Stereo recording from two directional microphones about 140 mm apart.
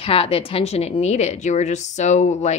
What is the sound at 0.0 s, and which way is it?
A woman's voice, 45° left (ahead or behind).